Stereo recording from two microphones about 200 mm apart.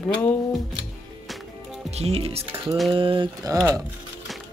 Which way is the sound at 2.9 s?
25° right (ahead or behind).